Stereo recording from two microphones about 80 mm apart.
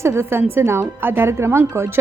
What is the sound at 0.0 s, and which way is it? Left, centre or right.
A woman's voice, right.